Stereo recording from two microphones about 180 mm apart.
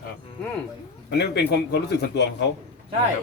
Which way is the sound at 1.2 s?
70° left (ahead or behind).